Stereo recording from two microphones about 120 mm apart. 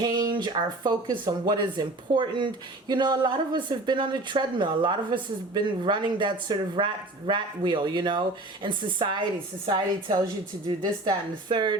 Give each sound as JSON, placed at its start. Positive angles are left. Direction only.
{"t": 0.0, "sound": "speech", "side_deg": -40}